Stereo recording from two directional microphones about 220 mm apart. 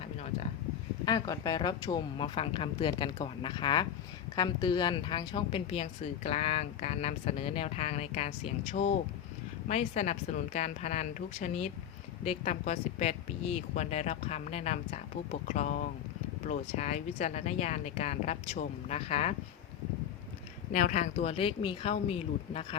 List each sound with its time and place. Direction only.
1.0 s speech: 15° left (ahead or behind)
20.7 s speech: 35° left (ahead or behind)